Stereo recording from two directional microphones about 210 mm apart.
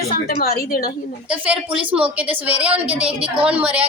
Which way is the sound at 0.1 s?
45° left (ahead or behind).